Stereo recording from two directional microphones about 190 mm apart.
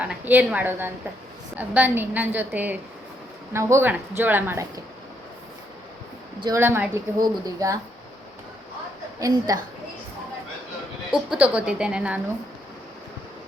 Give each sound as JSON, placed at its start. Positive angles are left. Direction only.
{"t": 0.0, "sound": "speech", "side_deg": -10}
{"t": 6.4, "sound": "speech", "side_deg": -15}
{"t": 9.1, "sound": "speech", "side_deg": -20}
{"t": 11.1, "sound": "a woman's voice", "side_deg": -5}